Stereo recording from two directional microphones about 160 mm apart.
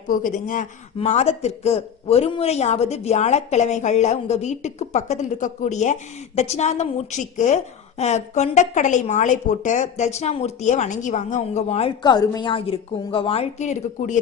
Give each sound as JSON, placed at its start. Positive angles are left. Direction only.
{"t": 0.1, "sound": "speech", "side_deg": 55}
{"t": 0.9, "sound": "speech", "side_deg": 45}